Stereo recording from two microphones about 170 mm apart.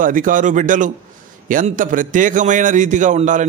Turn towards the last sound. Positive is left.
turn(degrees=-45)  # may be behind; listen again after turning